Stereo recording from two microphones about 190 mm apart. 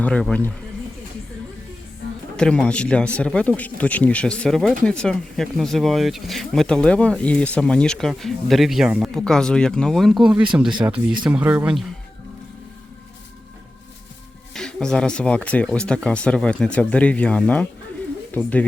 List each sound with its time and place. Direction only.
0.0 s speech: 5° left (ahead or behind)
2.3 s speech: 5° left (ahead or behind)
14.5 s speech: 5° left (ahead or behind)